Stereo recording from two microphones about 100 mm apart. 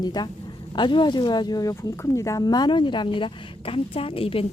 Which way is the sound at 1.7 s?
30° left (ahead or behind).